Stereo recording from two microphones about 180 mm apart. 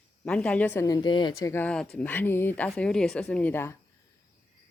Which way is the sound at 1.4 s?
10° left (ahead or behind).